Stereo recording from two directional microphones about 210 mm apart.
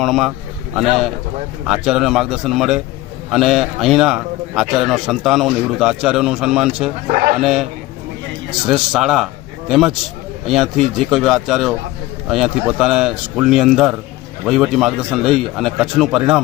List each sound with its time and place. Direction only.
0.0 s a man's voice: centre (ahead or behind)
7.1 s speech: 40° right (ahead or behind)
7.3 s a man's voice: centre (ahead or behind)